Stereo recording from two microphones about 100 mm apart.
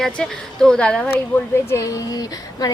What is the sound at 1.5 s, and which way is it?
Speech, 25° left (ahead or behind).